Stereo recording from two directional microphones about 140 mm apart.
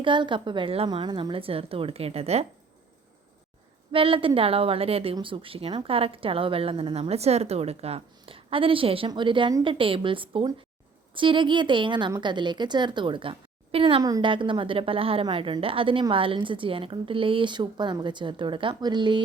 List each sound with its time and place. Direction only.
0.0 s a woman's voice: 35° right (ahead or behind)
3.9 s a woman's voice: 40° right (ahead or behind)
14.0 s a woman's voice: 30° right (ahead or behind)